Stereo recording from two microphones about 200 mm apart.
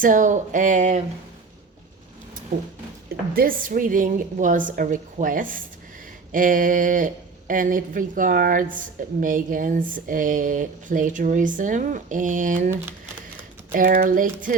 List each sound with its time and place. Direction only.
0.0 s speech: 40° right (ahead or behind)
3.1 s a woman's voice: 45° right (ahead or behind)
13.7 s a woman's voice: 45° right (ahead or behind)